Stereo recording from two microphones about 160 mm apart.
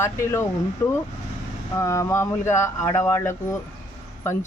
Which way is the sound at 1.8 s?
20° left (ahead or behind).